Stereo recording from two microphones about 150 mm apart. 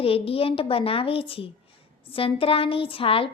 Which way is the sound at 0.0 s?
40° left (ahead or behind).